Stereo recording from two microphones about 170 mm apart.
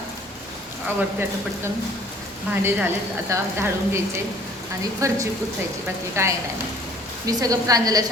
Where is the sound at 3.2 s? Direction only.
15° right (ahead or behind).